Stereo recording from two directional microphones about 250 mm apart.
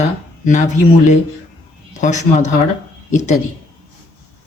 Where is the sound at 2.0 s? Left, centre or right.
Left.